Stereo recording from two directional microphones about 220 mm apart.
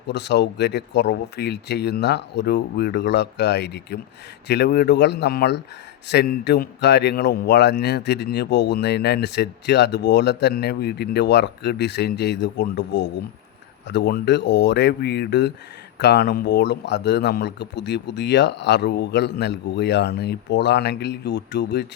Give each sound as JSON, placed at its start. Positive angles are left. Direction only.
{"t": 0.1, "sound": "a man's voice", "side_deg": 50}